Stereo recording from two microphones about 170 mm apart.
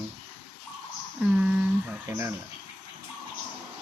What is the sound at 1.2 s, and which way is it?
A woman's voice, 5° right (ahead or behind).